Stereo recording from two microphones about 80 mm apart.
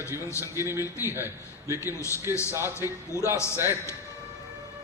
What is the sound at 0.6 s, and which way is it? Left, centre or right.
Speech, right.